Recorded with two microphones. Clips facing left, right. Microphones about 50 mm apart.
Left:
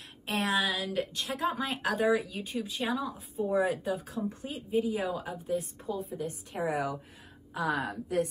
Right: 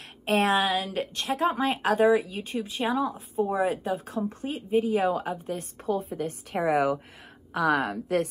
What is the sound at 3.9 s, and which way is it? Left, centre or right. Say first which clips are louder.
Speech: right 4 dB; right.